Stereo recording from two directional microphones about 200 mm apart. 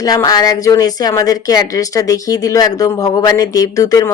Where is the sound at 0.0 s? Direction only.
20° left (ahead or behind).